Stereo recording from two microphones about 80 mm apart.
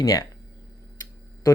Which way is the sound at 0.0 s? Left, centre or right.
Left.